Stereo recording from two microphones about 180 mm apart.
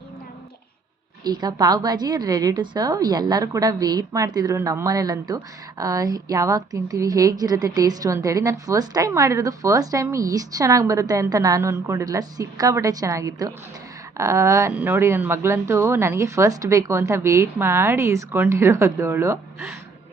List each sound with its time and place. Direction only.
1.2 s a woman's voice: 20° right (ahead or behind)